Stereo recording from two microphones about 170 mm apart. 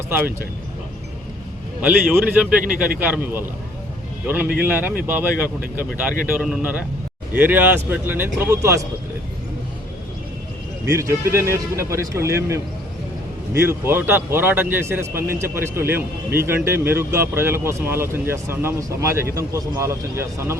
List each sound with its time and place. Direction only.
1.8 s a man's voice: 5° right (ahead or behind)
4.3 s speech: 10° right (ahead or behind)
10.8 s speech: 15° right (ahead or behind)